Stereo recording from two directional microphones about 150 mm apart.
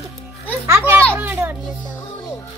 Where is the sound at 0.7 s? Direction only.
15° right (ahead or behind).